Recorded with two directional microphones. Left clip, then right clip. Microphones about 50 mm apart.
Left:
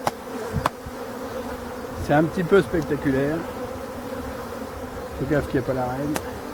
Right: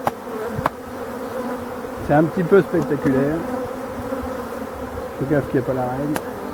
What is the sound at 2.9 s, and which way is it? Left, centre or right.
Speech, centre.